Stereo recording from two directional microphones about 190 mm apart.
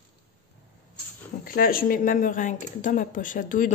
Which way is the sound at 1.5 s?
50° left (ahead or behind).